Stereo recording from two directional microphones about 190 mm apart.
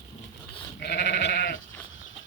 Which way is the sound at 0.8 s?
60° left (ahead or behind).